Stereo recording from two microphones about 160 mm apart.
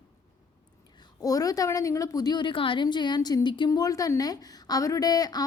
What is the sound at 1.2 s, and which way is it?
A woman's voice, 20° left (ahead or behind).